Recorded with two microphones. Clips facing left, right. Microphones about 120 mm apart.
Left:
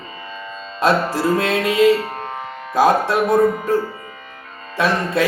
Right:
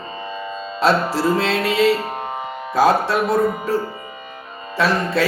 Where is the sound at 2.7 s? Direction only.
15° left (ahead or behind).